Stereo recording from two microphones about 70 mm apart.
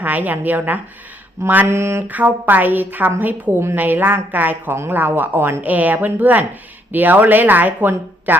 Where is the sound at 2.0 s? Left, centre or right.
Right.